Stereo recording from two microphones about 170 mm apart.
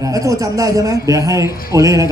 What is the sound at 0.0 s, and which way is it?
A man's voice, 20° right (ahead or behind).